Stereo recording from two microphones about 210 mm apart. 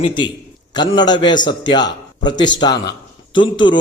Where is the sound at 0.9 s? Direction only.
20° left (ahead or behind).